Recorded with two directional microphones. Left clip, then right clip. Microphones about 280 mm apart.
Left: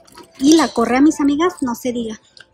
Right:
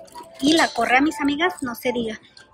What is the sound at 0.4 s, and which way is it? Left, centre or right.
A woman's voice, centre.